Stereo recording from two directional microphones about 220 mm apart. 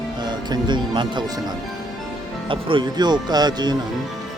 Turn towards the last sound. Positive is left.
turn(degrees=-20)  # may be behind; listen again after turning